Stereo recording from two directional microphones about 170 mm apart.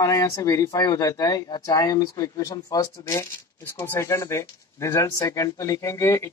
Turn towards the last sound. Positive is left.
turn(degrees=15)  # may be behind; listen again after turning